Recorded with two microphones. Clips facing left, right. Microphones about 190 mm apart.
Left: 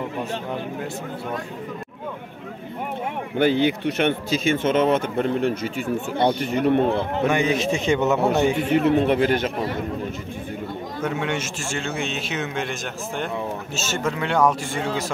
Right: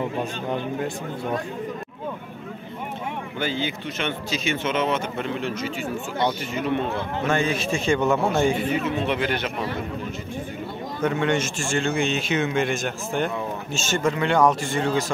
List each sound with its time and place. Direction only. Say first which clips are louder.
3.3 s speech: left 10 dB; 60° left (ahead or behind)
7.2 s a man's voice: left 2 dB; 15° left (ahead or behind)
8.7 s speech: left 6 dB; 60° left (ahead or behind); by 9.7 s 40° left (ahead or behind)
11.1 s a man's voice: right 4 dB; 5° left (ahead or behind)